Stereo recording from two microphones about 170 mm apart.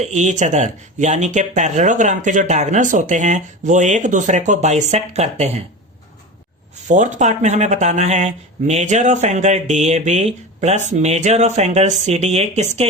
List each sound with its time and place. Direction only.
0.0 s speech: 45° right (ahead or behind)
6.8 s speech: 45° right (ahead or behind)